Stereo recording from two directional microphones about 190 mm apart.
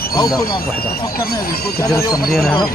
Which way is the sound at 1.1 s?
50° left (ahead or behind).